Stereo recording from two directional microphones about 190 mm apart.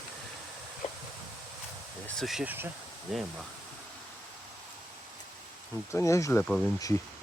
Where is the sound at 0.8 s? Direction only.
35° left (ahead or behind).